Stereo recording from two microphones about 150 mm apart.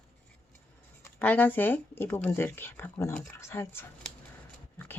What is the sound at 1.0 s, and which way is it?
Speech, 10° left (ahead or behind).